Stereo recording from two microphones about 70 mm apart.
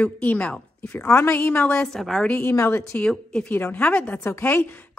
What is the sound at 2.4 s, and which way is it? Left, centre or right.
Speech, left.